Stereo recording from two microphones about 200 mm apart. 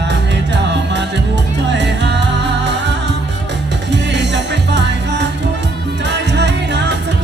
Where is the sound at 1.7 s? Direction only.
60° right (ahead or behind).